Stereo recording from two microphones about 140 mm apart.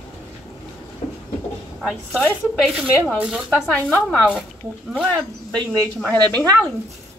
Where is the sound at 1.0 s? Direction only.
45° left (ahead or behind).